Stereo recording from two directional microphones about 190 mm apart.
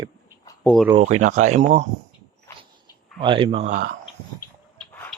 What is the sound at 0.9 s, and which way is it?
Speech, 35° right (ahead or behind).